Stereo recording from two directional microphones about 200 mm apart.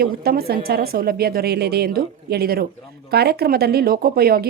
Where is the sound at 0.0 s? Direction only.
50° right (ahead or behind).